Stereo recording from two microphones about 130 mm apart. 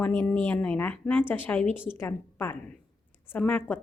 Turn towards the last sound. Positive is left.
turn(degrees=10)  # may be behind; listen again after turning